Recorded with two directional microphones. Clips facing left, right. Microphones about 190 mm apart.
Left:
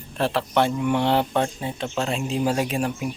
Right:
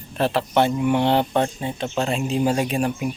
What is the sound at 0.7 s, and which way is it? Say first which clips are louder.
Speech: right 2 dB; 15° right (ahead or behind).